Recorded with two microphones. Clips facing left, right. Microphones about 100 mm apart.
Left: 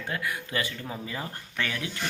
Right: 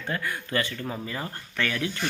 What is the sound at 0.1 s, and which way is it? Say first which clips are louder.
A man's voice: right 3 dB; 10° left (ahead or behind).